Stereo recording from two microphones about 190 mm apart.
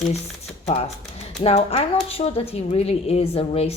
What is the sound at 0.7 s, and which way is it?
A woman's voice, 35° left (ahead or behind).